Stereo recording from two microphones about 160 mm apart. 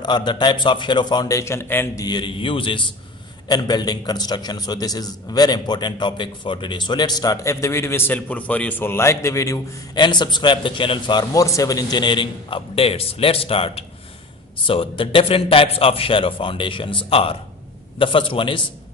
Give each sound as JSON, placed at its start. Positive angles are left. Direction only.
{"t": 0.0, "sound": "a man's voice", "side_deg": 30}
{"t": 2.0, "sound": "a man's voice", "side_deg": 30}